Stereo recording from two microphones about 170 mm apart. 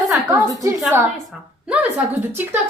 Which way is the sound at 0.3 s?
20° right (ahead or behind).